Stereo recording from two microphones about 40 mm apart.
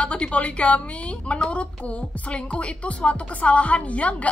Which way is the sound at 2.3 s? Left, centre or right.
Left.